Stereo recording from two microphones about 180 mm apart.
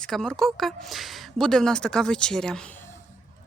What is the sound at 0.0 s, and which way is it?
Speech, 5° left (ahead or behind).